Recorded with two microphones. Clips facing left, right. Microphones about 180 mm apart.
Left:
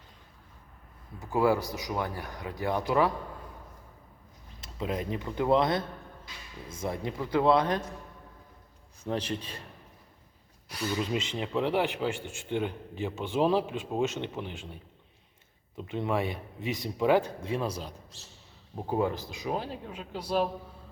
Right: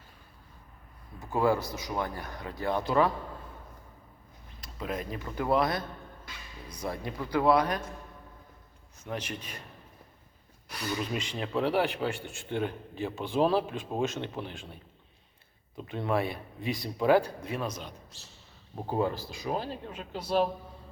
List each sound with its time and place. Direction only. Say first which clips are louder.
1.3 s a man's voice: left 1 dB; 15° left (ahead or behind)
4.6 s speech: left 2 dB; 25° left (ahead or behind)
9.0 s speech: left 5 dB; 30° left (ahead or behind)
11.0 s a man's voice: left 2 dB; 20° left (ahead or behind)
15.8 s speech: even; 20° left (ahead or behind)
18.9 s a man's voice: left 1 dB; 15° left (ahead or behind)